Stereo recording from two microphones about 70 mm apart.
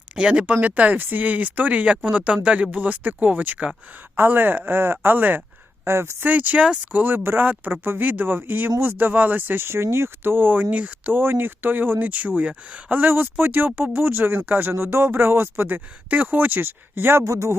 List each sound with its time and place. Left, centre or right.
0.2 s speech: centre
5.8 s speech: right
6.2 s speech: right
17.2 s speech: right